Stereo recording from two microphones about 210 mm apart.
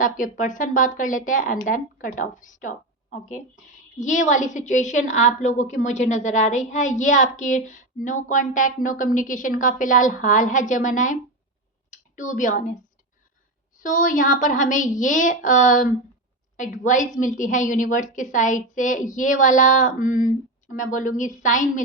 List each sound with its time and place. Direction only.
0.0 s a woman's voice: 40° left (ahead or behind)
13.7 s a woman's voice: 40° left (ahead or behind)